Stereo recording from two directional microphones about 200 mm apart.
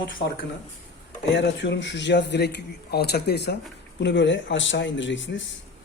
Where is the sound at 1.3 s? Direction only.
60° left (ahead or behind).